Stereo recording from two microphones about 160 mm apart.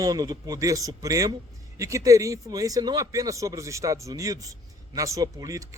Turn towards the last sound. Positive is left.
turn(degrees=-20)  # may be behind; listen again after turning